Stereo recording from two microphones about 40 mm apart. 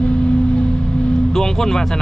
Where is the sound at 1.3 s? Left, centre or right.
Centre.